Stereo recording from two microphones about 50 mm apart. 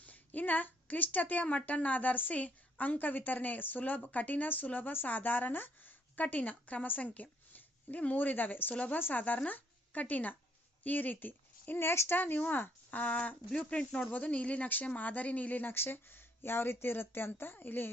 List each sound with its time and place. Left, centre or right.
0.0 s a woman's voice: left
8.7 s speech: left
9.0 s a woman's voice: left
11.8 s a woman's voice: left
15.7 s speech: left